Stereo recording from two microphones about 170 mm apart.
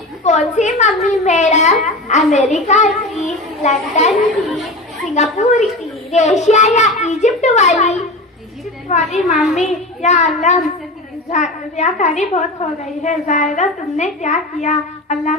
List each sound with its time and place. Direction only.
0.3 s a child's voice: 45° left (ahead or behind)
4.4 s speech: centre (ahead or behind)
5.1 s a child's voice: 40° left (ahead or behind)
9.3 s speech: 5° right (ahead or behind)
9.6 s a child's voice: 45° left (ahead or behind)